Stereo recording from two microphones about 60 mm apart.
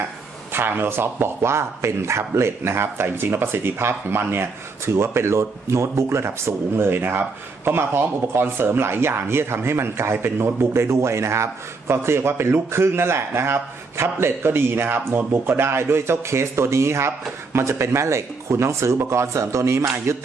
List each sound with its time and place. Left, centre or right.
0.5 s a man's voice: right
15.3 s a man's voice: right